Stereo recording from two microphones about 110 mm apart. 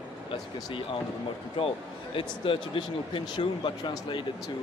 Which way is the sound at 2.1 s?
55° left (ahead or behind).